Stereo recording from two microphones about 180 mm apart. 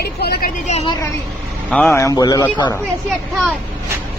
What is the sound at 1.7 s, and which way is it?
Speech, 10° left (ahead or behind).